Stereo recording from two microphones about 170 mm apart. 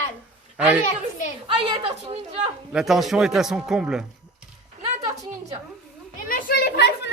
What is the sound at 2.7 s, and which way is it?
A man's voice, centre (ahead or behind).